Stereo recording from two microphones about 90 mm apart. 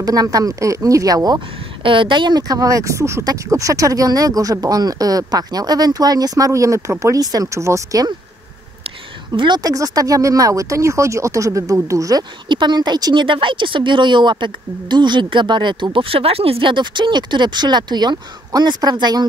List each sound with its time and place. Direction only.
0.0 s speech: 45° right (ahead or behind)
1.8 s speech: 70° right (ahead or behind); by 8.1 s 35° right (ahead or behind)
9.3 s speech: 50° right (ahead or behind)
12.4 s speech: 60° right (ahead or behind)